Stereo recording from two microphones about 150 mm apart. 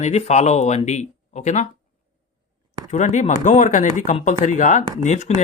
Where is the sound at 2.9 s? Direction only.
50° left (ahead or behind).